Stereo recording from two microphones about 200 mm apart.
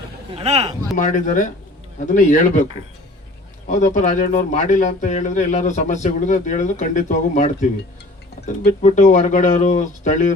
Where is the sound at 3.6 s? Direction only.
35° left (ahead or behind).